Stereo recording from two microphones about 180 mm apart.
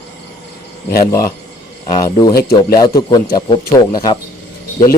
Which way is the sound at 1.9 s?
25° left (ahead or behind).